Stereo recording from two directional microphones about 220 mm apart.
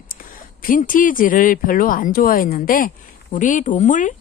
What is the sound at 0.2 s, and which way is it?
Speech, 40° left (ahead or behind).